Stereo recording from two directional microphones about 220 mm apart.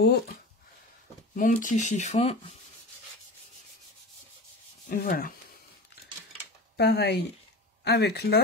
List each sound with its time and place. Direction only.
1.3 s speech: 35° left (ahead or behind)
4.8 s speech: 40° left (ahead or behind)
6.8 s speech: 50° left (ahead or behind)